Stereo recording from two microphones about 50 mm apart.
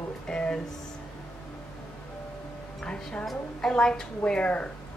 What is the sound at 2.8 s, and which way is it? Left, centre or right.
Music, centre.